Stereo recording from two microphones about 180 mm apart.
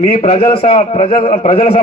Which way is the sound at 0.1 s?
35° left (ahead or behind).